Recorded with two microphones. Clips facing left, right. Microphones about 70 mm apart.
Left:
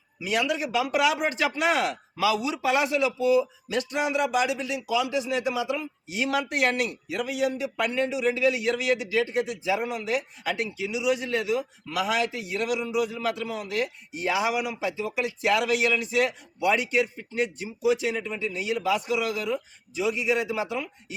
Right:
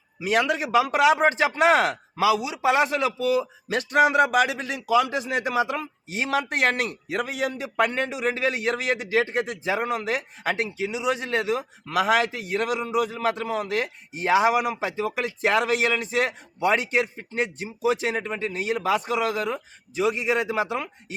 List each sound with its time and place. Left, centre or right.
0.2 s a man's voice: right
2.2 s speech: centre
2.8 s speech: right